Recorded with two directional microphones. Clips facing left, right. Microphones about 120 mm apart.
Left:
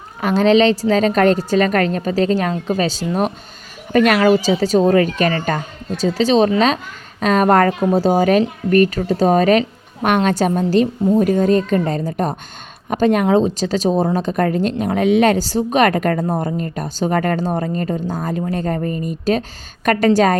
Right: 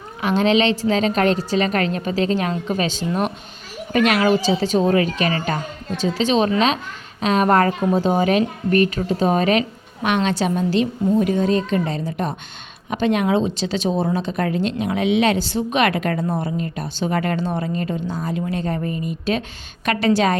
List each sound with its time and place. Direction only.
0.2 s a woman's voice: 40° left (ahead or behind)